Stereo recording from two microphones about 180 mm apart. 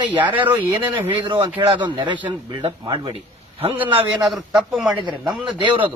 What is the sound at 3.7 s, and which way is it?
A man's voice, 10° right (ahead or behind).